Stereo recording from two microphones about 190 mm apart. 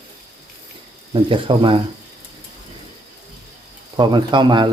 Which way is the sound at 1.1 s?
25° right (ahead or behind).